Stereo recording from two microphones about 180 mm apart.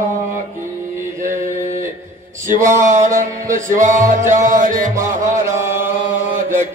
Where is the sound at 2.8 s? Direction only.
45° right (ahead or behind).